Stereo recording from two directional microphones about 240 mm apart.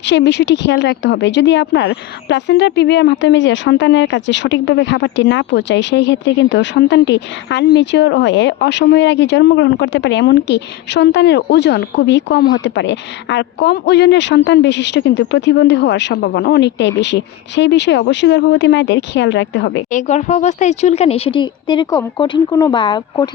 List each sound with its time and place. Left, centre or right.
0.0 s a woman's voice: left
19.9 s speech: left